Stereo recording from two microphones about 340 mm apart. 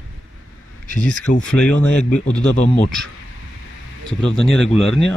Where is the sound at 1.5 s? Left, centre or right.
Centre.